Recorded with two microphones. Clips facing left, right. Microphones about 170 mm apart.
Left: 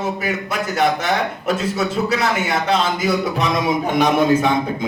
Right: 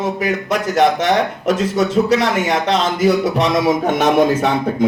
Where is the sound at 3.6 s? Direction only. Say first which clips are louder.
Right 3 dB; 40° right (ahead or behind).